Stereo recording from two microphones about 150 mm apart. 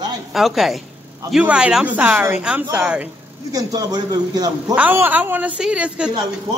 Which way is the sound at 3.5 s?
25° right (ahead or behind).